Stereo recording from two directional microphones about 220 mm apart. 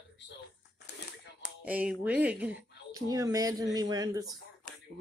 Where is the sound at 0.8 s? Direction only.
50° left (ahead or behind).